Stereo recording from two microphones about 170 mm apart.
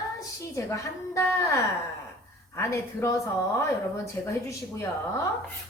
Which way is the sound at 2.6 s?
15° left (ahead or behind).